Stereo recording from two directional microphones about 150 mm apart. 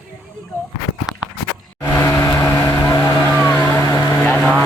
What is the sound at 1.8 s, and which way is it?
Vehicle, 20° left (ahead or behind).